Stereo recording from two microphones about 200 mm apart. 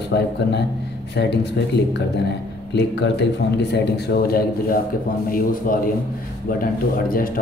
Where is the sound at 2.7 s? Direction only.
60° left (ahead or behind).